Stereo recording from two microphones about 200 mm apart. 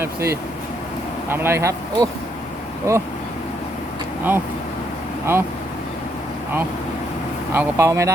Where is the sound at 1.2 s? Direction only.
10° right (ahead or behind).